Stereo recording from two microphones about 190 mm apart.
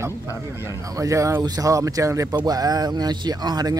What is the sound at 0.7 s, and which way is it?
Speech, 15° right (ahead or behind).